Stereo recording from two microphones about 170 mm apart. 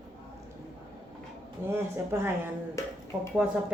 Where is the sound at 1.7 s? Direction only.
15° right (ahead or behind).